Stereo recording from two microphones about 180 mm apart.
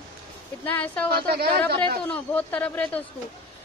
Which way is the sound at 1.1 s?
60° right (ahead or behind).